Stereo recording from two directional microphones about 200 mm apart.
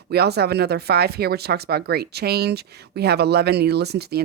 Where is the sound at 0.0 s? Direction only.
55° right (ahead or behind).